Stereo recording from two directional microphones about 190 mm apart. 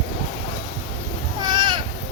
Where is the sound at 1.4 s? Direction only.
25° right (ahead or behind).